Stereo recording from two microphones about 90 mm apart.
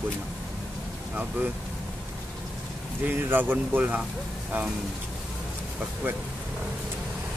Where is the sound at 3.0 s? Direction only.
20° right (ahead or behind).